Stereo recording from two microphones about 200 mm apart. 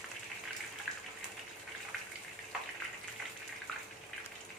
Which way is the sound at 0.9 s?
5° left (ahead or behind).